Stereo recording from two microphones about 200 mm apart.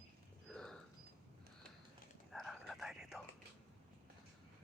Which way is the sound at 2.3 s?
Centre (ahead or behind).